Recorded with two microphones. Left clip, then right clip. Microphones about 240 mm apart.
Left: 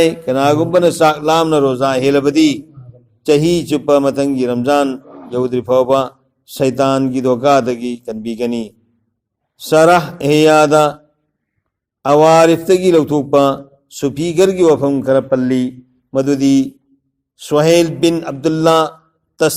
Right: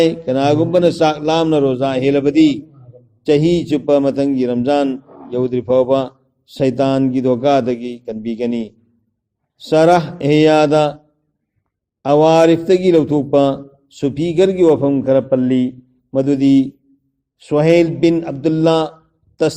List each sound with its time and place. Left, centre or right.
0.0 s a man's voice: left
12.0 s a man's voice: left